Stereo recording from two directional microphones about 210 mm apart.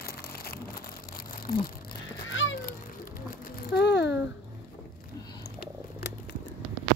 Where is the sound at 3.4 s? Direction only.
45° left (ahead or behind).